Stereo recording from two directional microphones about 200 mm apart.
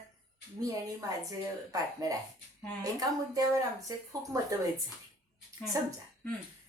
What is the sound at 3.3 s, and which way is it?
Speech, 15° right (ahead or behind).